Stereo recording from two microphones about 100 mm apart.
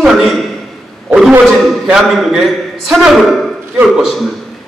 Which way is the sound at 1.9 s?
Centre (ahead or behind).